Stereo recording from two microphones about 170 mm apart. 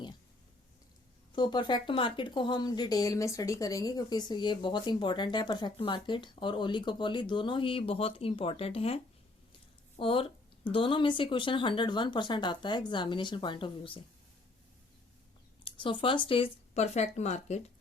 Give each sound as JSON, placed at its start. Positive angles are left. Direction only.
{"t": 1.3, "sound": "speech", "side_deg": 25}
{"t": 10.0, "sound": "speech", "side_deg": 30}
{"t": 15.6, "sound": "speech", "side_deg": 30}